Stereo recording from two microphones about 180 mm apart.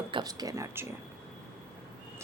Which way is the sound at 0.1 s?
20° right (ahead or behind).